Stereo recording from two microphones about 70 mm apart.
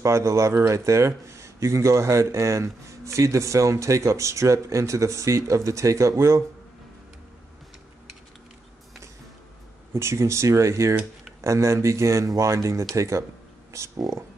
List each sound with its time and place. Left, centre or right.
0.0 s speech: right
9.9 s speech: right